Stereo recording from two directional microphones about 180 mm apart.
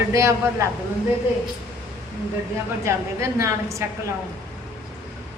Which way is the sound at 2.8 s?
15° right (ahead or behind).